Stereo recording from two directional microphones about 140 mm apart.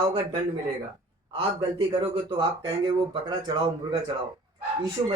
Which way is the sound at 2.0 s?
35° right (ahead or behind).